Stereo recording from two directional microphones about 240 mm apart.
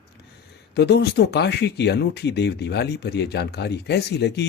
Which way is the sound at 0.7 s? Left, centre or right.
Left.